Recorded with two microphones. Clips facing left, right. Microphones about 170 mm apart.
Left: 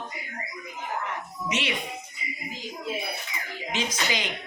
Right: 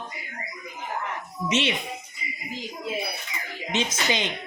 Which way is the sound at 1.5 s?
25° right (ahead or behind).